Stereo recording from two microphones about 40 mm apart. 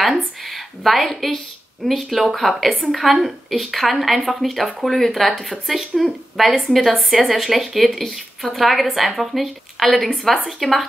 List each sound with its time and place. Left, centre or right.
0.5 s a woman's voice: centre